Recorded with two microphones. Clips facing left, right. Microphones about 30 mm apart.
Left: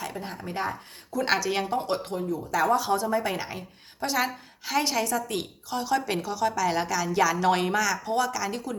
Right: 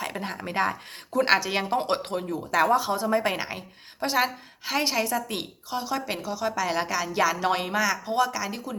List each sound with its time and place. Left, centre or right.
0.2 s speech: right
1.2 s a woman's voice: right
1.8 s speech: right
2.6 s speech: centre
3.1 s a woman's voice: right
5.7 s speech: centre